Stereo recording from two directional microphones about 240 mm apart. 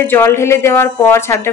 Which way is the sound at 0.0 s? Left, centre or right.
Centre.